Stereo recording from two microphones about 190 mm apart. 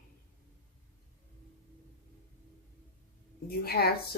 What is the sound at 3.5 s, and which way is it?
Speech, 55° left (ahead or behind).